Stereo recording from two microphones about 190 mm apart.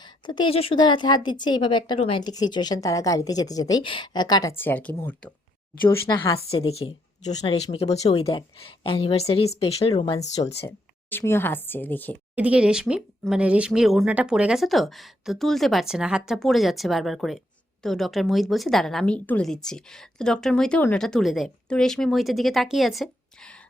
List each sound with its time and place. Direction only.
0.0 s a woman's voice: 25° left (ahead or behind)
6.2 s a woman's voice: 25° left (ahead or behind)
10.7 s a woman's voice: 10° left (ahead or behind)
12.4 s a woman's voice: 5° right (ahead or behind)